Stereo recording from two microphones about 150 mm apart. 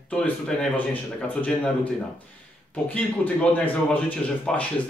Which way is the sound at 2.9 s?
10° left (ahead or behind).